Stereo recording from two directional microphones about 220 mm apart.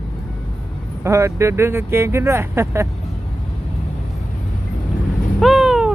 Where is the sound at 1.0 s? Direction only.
15° right (ahead or behind).